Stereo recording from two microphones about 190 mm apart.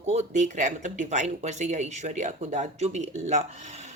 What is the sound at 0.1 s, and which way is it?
Speech, 40° right (ahead or behind).